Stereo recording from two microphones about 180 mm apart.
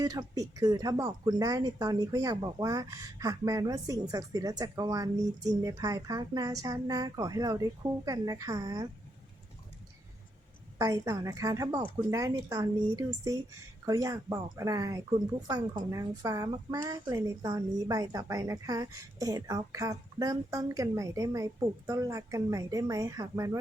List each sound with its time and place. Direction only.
0.0 s a woman's voice: 20° right (ahead or behind)
10.8 s a woman's voice: 20° right (ahead or behind)